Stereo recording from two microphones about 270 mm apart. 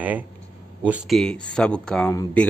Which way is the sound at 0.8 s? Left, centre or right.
Centre.